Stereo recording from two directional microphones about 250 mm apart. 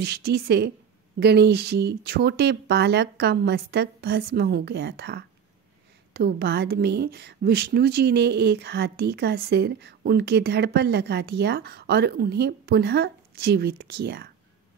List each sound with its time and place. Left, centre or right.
0.0 s a woman's voice: right